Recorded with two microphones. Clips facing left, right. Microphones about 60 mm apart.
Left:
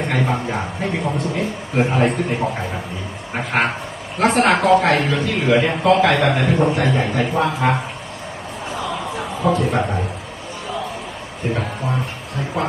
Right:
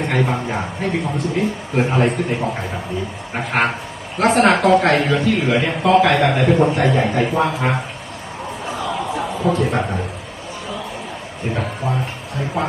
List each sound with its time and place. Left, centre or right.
0.0 s a man's voice: centre
9.4 s a man's voice: centre
12.6 s a man's voice: centre